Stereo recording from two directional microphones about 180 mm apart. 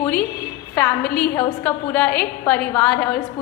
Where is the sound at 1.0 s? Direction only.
60° left (ahead or behind).